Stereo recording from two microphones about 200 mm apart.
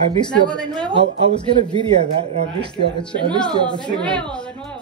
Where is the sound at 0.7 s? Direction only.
25° right (ahead or behind).